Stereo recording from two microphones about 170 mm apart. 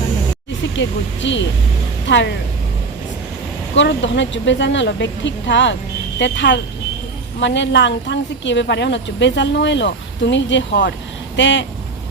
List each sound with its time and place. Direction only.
0.8 s speech: 90° left
3.8 s speech: 85° left